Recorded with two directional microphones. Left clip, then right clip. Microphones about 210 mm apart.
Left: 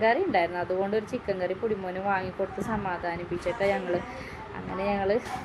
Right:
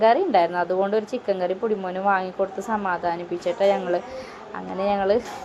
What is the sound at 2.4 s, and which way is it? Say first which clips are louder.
Speech: right 6 dB; 15° right (ahead or behind).